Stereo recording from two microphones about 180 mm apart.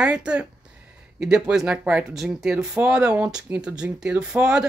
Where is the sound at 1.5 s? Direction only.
5° right (ahead or behind).